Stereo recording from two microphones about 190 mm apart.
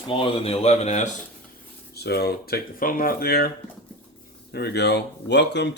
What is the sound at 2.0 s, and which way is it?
Speech, 55° left (ahead or behind).